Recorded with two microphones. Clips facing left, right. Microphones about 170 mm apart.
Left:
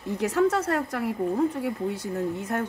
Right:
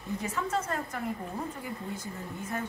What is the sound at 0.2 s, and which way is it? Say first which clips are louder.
Speech: left 12 dB; 75° left (ahead or behind).